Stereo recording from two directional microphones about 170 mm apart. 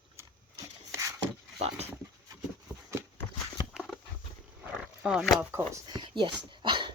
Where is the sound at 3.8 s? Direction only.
Centre (ahead or behind).